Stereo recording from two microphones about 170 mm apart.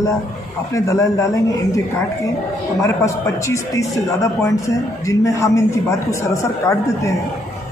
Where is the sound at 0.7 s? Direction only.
20° left (ahead or behind).